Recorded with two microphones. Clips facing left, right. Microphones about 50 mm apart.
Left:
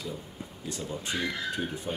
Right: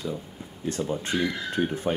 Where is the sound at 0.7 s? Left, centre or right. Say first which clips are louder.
Right 7 dB; right.